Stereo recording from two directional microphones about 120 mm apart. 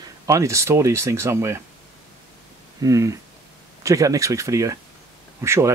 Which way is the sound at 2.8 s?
30° right (ahead or behind).